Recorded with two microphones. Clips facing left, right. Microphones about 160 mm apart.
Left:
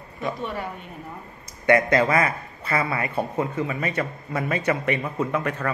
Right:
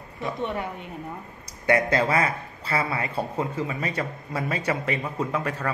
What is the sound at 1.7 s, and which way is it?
Speech, 30° right (ahead or behind).